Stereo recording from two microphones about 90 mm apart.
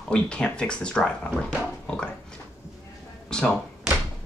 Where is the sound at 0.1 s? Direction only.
10° left (ahead or behind).